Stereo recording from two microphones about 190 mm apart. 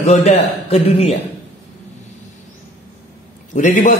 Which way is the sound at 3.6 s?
40° left (ahead or behind).